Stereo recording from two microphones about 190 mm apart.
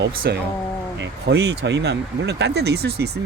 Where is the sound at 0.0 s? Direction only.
55° right (ahead or behind).